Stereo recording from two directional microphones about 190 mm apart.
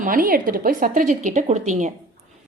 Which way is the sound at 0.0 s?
45° right (ahead or behind).